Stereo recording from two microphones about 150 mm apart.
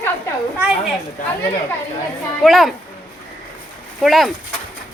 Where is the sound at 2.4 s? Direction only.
Centre (ahead or behind).